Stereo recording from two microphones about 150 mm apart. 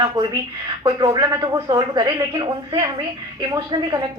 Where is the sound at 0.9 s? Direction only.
30° right (ahead or behind).